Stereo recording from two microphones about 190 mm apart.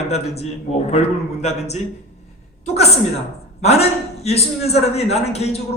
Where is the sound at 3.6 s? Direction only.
35° left (ahead or behind).